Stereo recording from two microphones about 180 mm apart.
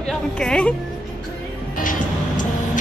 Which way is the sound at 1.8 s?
50° left (ahead or behind).